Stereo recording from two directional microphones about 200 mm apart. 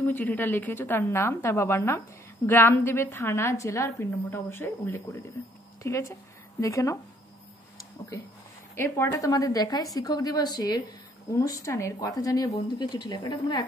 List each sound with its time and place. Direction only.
0.0 s a woman's voice: 10° left (ahead or behind)
8.7 s a woman's voice: 10° left (ahead or behind)